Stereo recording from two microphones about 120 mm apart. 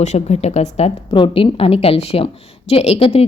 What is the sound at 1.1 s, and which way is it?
A woman's voice, 45° left (ahead or behind).